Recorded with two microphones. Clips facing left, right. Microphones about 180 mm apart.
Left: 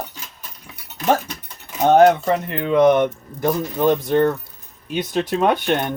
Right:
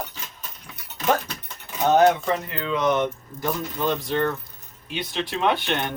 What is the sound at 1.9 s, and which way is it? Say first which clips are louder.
Speech: left 5 dB; 55° left (ahead or behind).